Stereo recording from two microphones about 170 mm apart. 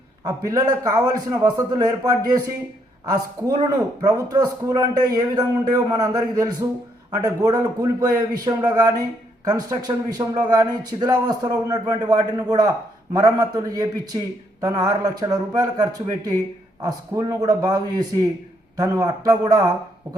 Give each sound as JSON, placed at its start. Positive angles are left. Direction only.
{"t": 0.3, "sound": "a man's voice", "side_deg": -20}